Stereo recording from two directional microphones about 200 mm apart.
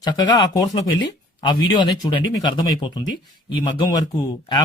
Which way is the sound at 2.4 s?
20° left (ahead or behind).